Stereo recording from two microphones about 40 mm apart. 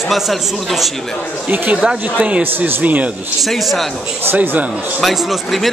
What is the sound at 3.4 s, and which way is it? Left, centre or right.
Speech, centre.